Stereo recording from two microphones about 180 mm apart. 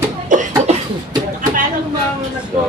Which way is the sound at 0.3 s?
45° right (ahead or behind).